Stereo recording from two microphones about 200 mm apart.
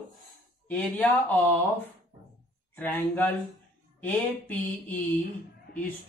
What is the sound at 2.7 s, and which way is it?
Speech, 10° left (ahead or behind).